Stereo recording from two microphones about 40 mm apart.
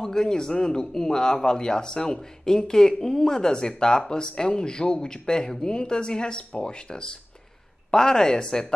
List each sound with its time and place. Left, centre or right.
0.0 s a man's voice: centre